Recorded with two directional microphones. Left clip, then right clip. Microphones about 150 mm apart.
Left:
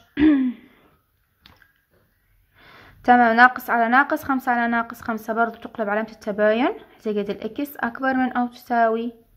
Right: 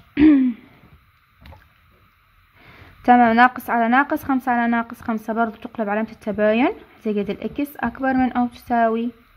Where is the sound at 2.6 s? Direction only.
15° right (ahead or behind).